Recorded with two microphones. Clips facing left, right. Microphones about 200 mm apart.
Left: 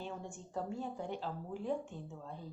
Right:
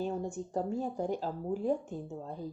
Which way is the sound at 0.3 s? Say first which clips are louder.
Right 7 dB; 40° right (ahead or behind).